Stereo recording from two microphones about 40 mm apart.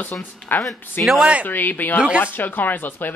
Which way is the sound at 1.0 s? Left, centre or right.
Left.